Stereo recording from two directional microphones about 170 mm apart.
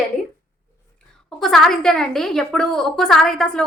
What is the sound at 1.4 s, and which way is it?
A woman's voice, centre (ahead or behind).